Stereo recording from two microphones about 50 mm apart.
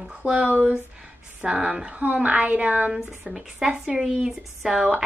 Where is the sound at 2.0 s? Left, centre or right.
Right.